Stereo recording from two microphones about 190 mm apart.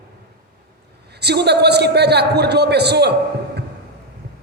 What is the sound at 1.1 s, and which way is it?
A woman's voice, 60° right (ahead or behind).